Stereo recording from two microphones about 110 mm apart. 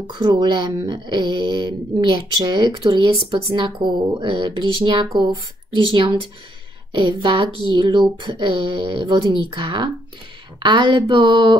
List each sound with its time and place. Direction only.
0.0 s speech: 40° right (ahead or behind)